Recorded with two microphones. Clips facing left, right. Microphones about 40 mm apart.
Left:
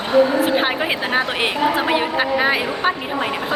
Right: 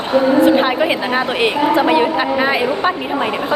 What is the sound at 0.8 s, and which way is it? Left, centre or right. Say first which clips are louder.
Speech: right 4 dB; centre.